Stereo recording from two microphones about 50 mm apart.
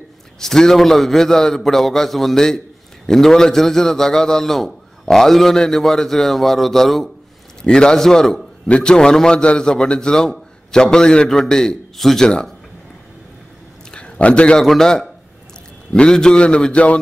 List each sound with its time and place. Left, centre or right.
0.4 s a man's voice: centre
13.9 s a sound: left
14.6 s a man's voice: centre; by 17.0 s left